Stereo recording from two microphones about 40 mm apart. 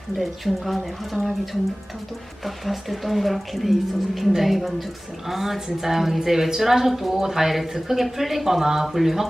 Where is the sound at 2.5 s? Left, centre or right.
Centre.